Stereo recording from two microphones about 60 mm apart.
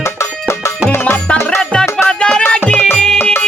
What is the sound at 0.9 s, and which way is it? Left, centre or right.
Music, left.